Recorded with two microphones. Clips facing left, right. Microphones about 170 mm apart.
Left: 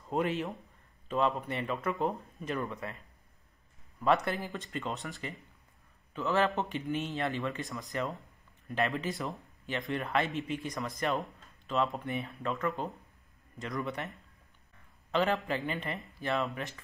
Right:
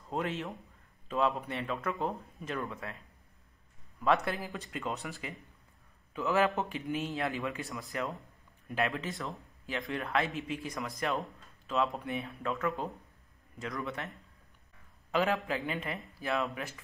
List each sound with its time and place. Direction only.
0.1 s speech: 5° left (ahead or behind)
4.0 s speech: centre (ahead or behind)